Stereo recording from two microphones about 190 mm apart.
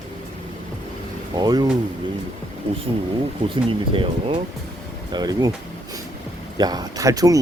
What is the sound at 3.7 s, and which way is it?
Speech, 30° right (ahead or behind).